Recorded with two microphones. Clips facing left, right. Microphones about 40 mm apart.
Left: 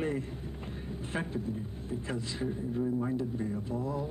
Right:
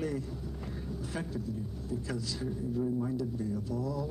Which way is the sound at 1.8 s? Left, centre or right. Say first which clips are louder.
Even; left.